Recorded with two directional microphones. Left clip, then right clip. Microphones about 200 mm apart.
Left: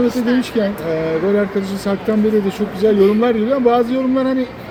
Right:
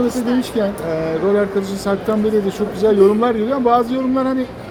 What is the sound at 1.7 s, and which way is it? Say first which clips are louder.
Speech: right 1 dB; 10° left (ahead or behind).